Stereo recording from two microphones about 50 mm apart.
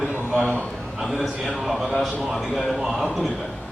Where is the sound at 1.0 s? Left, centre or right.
Centre.